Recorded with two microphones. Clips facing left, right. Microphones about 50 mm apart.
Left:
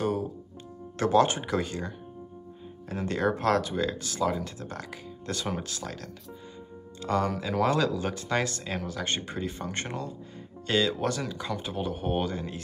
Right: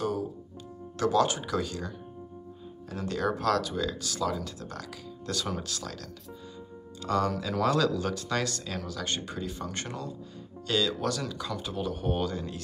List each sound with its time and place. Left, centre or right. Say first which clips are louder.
0.9 s speech: left 2 dB; left
7.1 s speech: even; left